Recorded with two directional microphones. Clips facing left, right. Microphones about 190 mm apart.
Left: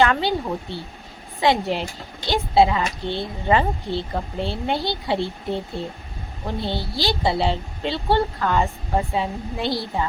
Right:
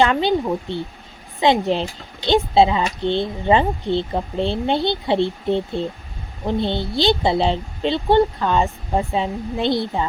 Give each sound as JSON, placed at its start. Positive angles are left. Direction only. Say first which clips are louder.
{"t": 0.0, "sound": "a woman's voice", "louder": "right 3 dB", "side_deg": -20}
{"t": 6.6, "sound": "a woman's voice", "louder": "right 4 dB", "side_deg": -20}